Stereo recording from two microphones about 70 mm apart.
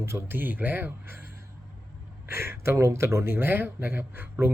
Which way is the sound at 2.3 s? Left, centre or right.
Right.